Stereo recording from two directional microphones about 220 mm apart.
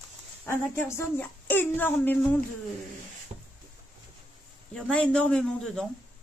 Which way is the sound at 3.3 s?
30° right (ahead or behind).